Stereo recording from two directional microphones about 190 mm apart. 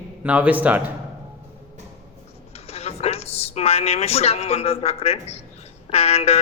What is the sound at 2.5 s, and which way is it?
A woman's voice, 35° left (ahead or behind).